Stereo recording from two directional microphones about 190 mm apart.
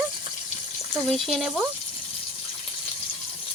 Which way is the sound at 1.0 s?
Centre (ahead or behind).